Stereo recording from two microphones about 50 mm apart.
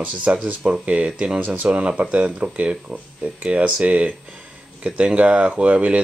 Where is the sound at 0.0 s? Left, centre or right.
Right.